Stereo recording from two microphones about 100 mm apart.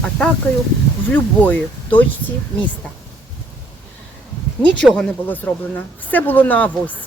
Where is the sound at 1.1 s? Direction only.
15° left (ahead or behind).